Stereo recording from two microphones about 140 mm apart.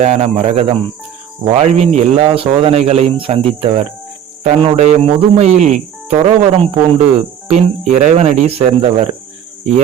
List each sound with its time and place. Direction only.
0.0 s speech: 50° right (ahead or behind)